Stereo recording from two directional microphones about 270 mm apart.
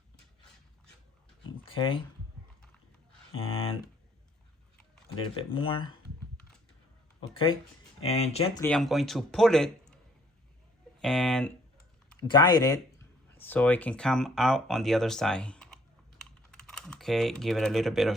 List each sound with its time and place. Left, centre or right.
1.7 s speech: centre
3.3 s speech: left
5.4 s speech: centre
8.0 s speech: left
8.6 s speech: centre
11.0 s speech: centre
12.3 s speech: centre